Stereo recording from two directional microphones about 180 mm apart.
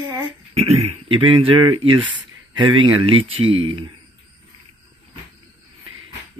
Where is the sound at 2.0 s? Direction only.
90° right.